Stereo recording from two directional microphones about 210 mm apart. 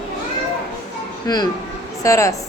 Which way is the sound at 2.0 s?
15° left (ahead or behind).